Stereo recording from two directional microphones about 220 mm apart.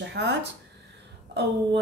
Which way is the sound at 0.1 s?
50° right (ahead or behind).